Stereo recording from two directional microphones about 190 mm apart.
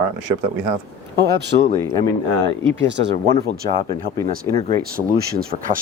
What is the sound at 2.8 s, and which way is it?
Speech, 65° right (ahead or behind).